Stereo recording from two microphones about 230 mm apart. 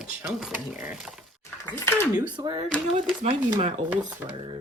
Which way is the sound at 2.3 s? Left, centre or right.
Centre.